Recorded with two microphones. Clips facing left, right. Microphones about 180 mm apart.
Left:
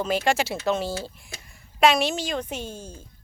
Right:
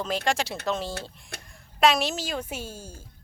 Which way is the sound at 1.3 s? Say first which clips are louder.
Right 1 dB; 65° right (ahead or behind).